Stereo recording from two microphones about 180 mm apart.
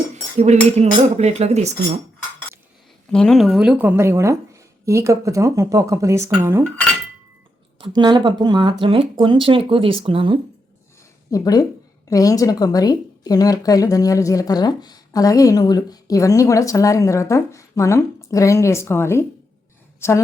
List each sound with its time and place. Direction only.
0.3 s speech: 40° right (ahead or behind)
3.1 s a woman's voice: 5° left (ahead or behind); by 6.7 s 15° right (ahead or behind)
7.8 s speech: 25° right (ahead or behind)
11.3 s a woman's voice: 20° left (ahead or behind)